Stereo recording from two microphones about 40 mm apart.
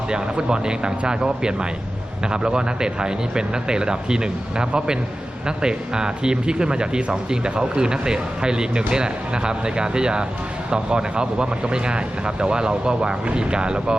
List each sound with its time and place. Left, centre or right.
0.1 s speech: right